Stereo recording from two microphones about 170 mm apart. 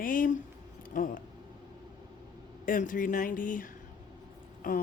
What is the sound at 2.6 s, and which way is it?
A woman's voice, 50° left (ahead or behind).